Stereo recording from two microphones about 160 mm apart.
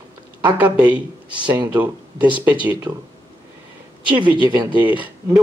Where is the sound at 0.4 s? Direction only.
10° right (ahead or behind).